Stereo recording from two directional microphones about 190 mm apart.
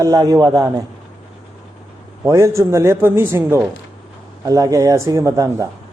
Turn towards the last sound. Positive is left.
turn(degrees=-15)  # may be behind; listen again after turning